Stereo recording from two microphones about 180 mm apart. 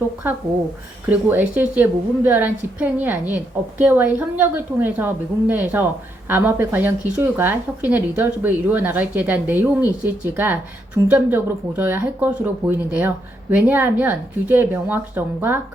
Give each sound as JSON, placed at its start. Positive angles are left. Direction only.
{"t": 1.1, "sound": "a woman's voice", "side_deg": -10}